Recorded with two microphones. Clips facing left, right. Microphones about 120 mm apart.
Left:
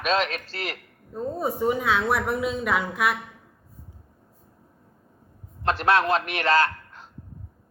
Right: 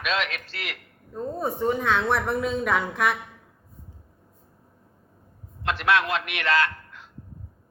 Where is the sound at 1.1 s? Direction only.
10° left (ahead or behind).